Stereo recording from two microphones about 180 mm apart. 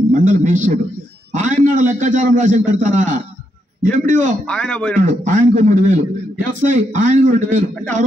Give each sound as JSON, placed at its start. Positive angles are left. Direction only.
{"t": 0.1, "sound": "a man's voice", "side_deg": -45}
{"t": 4.5, "sound": "speech", "side_deg": 5}
{"t": 4.9, "sound": "a man's voice", "side_deg": -45}